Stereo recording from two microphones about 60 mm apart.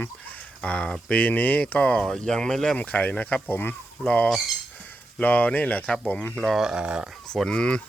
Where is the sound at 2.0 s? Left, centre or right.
Centre.